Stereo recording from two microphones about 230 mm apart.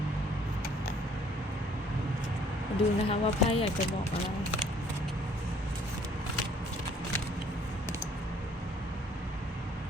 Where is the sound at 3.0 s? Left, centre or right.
Left.